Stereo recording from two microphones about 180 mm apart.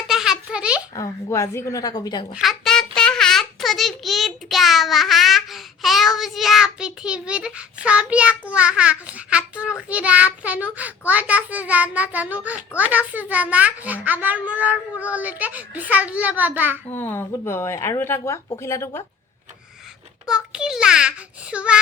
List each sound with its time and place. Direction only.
0.1 s a sound: 5° right (ahead or behind)
0.9 s a woman's voice: 15° left (ahead or behind)
2.3 s a child's voice: centre (ahead or behind)
16.9 s speech: 10° left (ahead or behind)
20.2 s a child's voice: 5° right (ahead or behind)